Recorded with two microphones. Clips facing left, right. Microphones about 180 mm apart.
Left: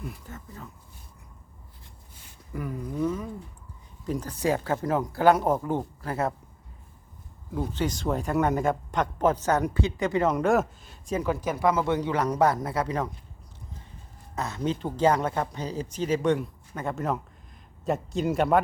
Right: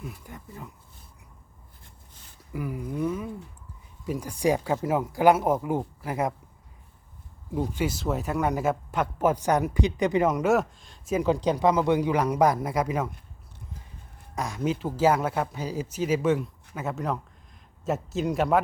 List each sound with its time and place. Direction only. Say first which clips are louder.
0.3 s speech: even; 15° right (ahead or behind)
2.5 s speech: right 1 dB; 10° right (ahead or behind)
7.5 s speech: right 1 dB; 10° right (ahead or behind)
10.2 s speech: even; centre (ahead or behind)
11.1 s speech: right 4 dB; 15° right (ahead or behind)
14.3 s speech: right 1 dB; 10° right (ahead or behind)